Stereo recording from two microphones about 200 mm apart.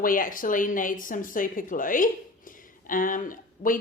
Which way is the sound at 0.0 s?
45° left (ahead or behind).